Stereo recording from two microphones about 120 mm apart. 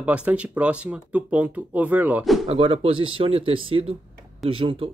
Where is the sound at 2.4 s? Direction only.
50° right (ahead or behind).